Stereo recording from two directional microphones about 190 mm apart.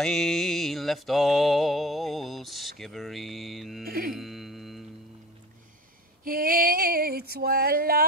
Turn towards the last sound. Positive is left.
turn(degrees=-50)  # may be behind; listen again after turning